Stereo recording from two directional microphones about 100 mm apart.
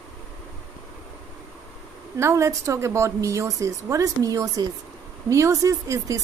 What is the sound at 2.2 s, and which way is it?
Speech, 30° right (ahead or behind).